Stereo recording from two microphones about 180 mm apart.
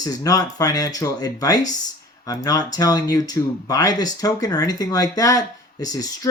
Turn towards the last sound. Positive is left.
turn(degrees=20)  # may be behind; listen again after turning